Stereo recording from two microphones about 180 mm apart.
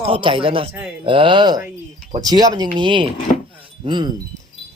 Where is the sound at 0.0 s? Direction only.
30° right (ahead or behind).